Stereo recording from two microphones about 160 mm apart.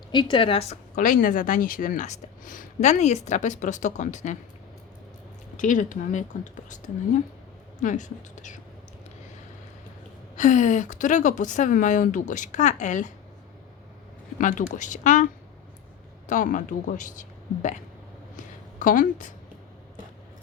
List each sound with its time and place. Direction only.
0.1 s a woman's voice: 30° left (ahead or behind)
0.9 s speech: 60° left (ahead or behind)
5.5 s speech: 55° left (ahead or behind)
10.3 s speech: 50° left (ahead or behind)
14.3 s speech: 60° left (ahead or behind)
18.8 s a woman's voice: 55° left (ahead or behind)